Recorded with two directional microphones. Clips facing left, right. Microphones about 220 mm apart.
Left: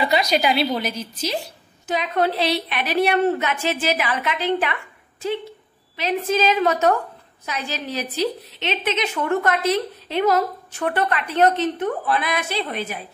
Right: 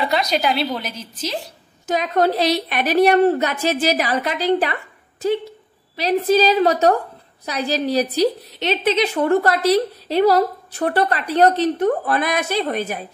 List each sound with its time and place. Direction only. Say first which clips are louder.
0.0 s a woman's voice: even; 5° left (ahead or behind)
1.9 s a woman's voice: right 3 dB; 40° right (ahead or behind)
5.9 s a woman's voice: right 5 dB; 35° right (ahead or behind)